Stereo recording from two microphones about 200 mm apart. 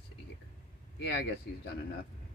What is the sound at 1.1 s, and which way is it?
Speech, 55° left (ahead or behind).